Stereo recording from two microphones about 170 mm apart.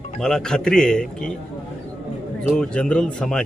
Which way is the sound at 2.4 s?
5° left (ahead or behind).